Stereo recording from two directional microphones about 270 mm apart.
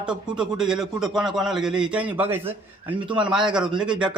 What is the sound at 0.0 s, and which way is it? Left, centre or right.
A man's voice, centre.